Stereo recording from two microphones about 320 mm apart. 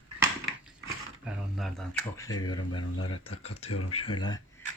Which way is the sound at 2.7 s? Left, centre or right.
Left.